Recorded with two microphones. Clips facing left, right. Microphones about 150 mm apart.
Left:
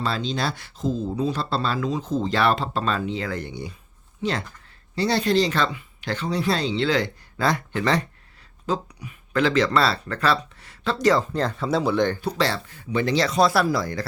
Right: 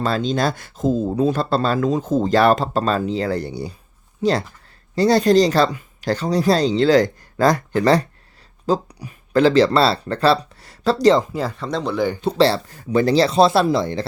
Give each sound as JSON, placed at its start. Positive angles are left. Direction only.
{"t": 0.0, "sound": "speech", "side_deg": -50}
{"t": 11.3, "sound": "speech", "side_deg": -5}
{"t": 12.2, "sound": "speech", "side_deg": -30}